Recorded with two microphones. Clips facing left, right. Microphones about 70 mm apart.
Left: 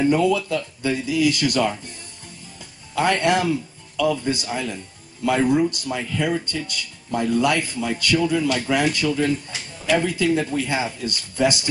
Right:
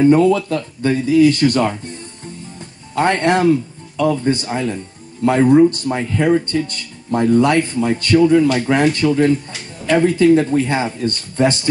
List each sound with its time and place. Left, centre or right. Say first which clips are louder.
0.0 s a man's voice: right 7 dB; right
2.9 s a man's voice: right 4 dB; right